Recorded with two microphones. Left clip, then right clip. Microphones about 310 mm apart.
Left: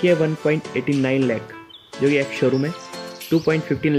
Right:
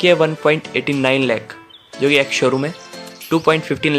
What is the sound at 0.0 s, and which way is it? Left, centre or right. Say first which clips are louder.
Speech: right 5 dB; centre.